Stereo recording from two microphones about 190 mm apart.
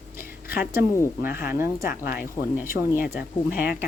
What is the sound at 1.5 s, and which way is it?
Speech, 15° right (ahead or behind).